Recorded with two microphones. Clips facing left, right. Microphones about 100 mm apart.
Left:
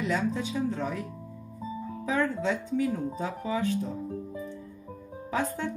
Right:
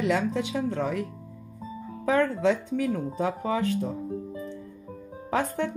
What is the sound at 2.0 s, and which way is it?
Speech, 70° right (ahead or behind).